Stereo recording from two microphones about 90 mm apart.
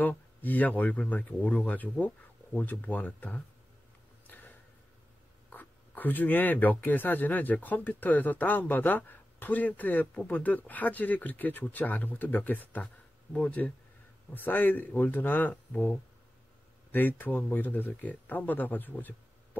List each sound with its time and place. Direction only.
0.0 s speech: 20° left (ahead or behind)
4.3 s a sound: 20° left (ahead or behind)
5.5 s speech: 20° left (ahead or behind)